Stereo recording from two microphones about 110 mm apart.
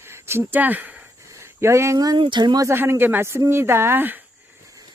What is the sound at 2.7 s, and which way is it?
Speech, 20° right (ahead or behind).